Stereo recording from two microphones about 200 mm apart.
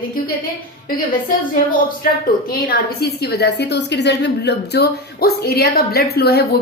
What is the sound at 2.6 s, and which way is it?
A woman's voice, 50° left (ahead or behind).